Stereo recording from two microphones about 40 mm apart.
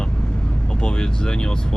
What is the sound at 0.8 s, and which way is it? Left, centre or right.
Speech, left.